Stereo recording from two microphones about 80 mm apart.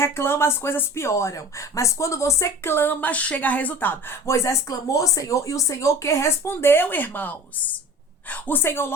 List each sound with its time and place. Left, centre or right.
0.0 s speech: left
4.3 s a woman's voice: left